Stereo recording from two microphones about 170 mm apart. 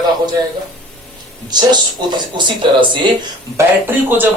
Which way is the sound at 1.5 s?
25° right (ahead or behind).